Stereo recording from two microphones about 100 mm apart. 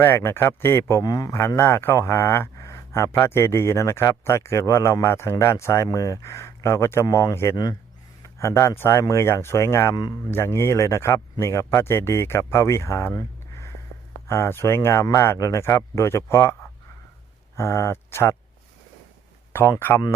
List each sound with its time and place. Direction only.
0.0 s a man's voice: 25° left (ahead or behind)
7.5 s a man's voice: 40° left (ahead or behind)
9.9 s speech: 40° left (ahead or behind)
10.3 s a man's voice: 25° left (ahead or behind)